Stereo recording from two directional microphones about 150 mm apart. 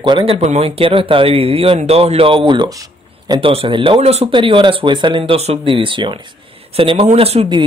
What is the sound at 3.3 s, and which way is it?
A man's voice, 35° right (ahead or behind).